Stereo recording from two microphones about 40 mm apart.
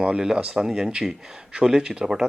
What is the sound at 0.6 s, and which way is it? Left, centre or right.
Speech, centre.